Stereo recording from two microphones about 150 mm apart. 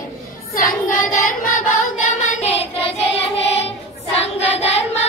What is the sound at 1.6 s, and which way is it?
Child singing, 55° left (ahead or behind).